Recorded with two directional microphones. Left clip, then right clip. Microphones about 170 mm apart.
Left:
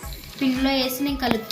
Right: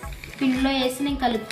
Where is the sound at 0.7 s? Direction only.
15° right (ahead or behind).